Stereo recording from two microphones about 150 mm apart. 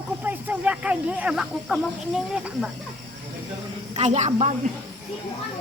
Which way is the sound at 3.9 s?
50° right (ahead or behind).